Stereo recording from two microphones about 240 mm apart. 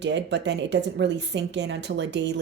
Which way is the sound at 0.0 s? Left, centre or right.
Right.